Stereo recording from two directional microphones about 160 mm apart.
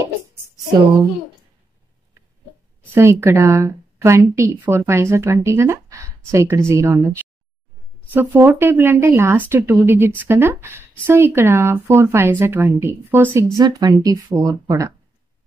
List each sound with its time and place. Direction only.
2.9 s speech: 15° right (ahead or behind)